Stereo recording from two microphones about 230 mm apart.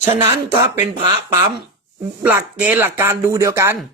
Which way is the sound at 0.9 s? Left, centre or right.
Right.